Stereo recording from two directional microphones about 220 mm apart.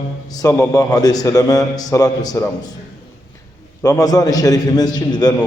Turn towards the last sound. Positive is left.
turn(degrees=20)  # may be behind; listen again after turning